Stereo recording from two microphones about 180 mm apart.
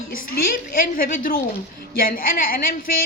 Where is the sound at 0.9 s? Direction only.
50° left (ahead or behind).